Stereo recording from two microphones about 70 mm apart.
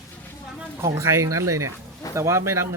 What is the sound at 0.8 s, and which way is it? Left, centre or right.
Speech, right.